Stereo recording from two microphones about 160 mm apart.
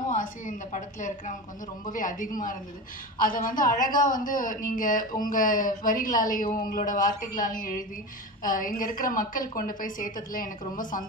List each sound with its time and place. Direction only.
0.1 s a woman's voice: 50° left (ahead or behind)